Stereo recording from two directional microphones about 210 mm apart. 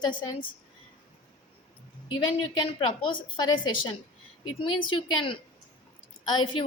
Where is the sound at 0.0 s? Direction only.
20° left (ahead or behind).